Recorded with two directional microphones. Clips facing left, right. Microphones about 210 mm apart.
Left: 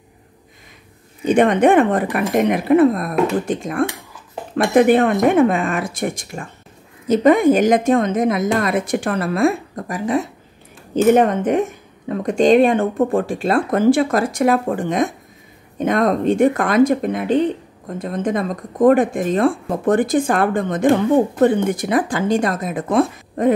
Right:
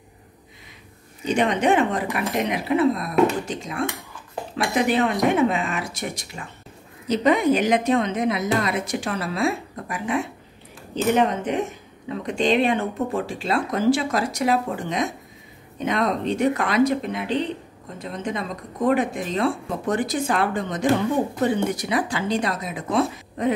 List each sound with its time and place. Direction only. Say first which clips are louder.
1.2 s speech: left 7 dB; 55° left (ahead or behind)
11.1 s speech: left 6 dB; 50° left (ahead or behind)